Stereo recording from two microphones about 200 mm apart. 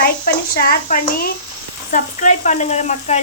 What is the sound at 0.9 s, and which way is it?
Speech, 45° left (ahead or behind).